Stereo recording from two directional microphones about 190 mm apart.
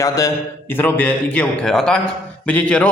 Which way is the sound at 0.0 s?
15° left (ahead or behind).